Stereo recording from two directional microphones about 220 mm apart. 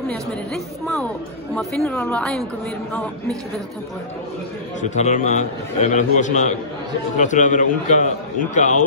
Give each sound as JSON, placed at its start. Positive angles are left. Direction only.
{"t": 1.5, "sound": "a woman's voice", "side_deg": 5}
{"t": 4.8, "sound": "a man's voice", "side_deg": 30}